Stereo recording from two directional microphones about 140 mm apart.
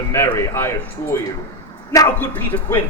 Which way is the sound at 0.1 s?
15° left (ahead or behind).